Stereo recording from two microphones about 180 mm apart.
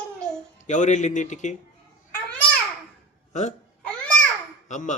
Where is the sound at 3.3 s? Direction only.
40° left (ahead or behind).